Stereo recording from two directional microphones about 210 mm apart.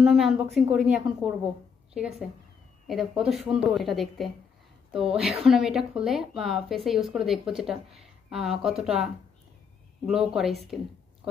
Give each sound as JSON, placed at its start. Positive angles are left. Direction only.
{"t": 0.0, "sound": "a woman's voice", "side_deg": 0}